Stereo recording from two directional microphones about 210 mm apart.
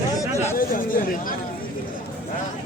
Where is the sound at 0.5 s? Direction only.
40° left (ahead or behind).